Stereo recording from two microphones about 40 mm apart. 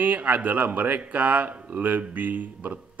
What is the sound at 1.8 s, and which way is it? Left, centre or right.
Speech, right.